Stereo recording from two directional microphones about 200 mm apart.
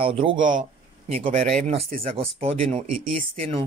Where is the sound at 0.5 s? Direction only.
35° right (ahead or behind).